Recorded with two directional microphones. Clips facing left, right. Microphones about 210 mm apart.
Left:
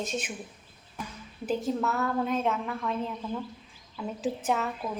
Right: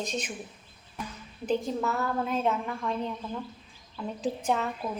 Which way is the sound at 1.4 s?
5° left (ahead or behind).